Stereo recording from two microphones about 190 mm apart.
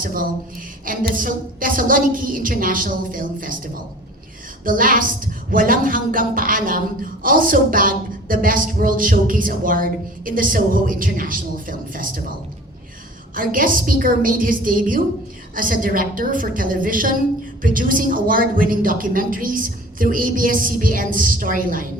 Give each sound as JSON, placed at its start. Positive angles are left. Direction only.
{"t": 0.0, "sound": "a woman's voice", "side_deg": -50}
{"t": 4.6, "sound": "a woman's voice", "side_deg": -45}
{"t": 13.3, "sound": "a woman's voice", "side_deg": -45}